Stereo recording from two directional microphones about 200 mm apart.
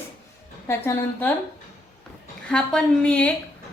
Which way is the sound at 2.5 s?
5° left (ahead or behind).